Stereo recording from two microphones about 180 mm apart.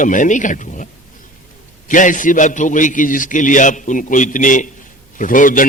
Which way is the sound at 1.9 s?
45° left (ahead or behind).